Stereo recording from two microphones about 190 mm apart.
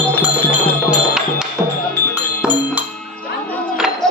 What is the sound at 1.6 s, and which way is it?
Music, 20° right (ahead or behind).